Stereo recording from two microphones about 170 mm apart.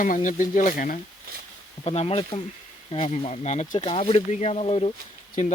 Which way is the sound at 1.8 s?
35° left (ahead or behind).